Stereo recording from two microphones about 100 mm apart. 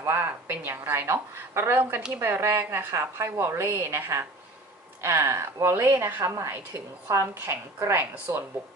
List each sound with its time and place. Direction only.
0.0 s a woman's voice: 25° right (ahead or behind)